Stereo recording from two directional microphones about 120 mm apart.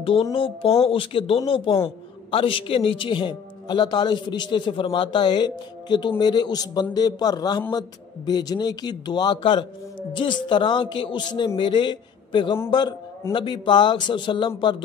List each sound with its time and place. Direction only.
0.0 s a man's voice: 50° left (ahead or behind)